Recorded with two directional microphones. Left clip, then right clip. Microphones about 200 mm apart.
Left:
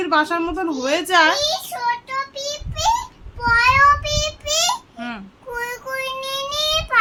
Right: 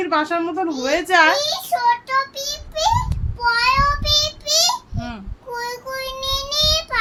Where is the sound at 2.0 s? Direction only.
45° right (ahead or behind).